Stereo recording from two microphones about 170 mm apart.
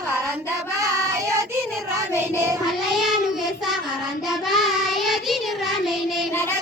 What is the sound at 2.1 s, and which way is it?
Child singing, 15° right (ahead or behind).